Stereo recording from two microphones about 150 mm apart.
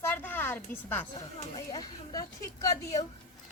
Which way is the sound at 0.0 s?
15° left (ahead or behind).